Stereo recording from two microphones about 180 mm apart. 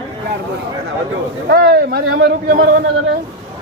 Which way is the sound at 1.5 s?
55° right (ahead or behind).